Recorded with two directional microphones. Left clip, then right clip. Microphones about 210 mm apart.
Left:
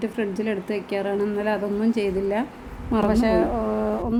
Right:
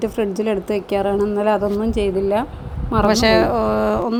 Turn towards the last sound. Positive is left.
turn(degrees=-15)  # may be behind; listen again after turning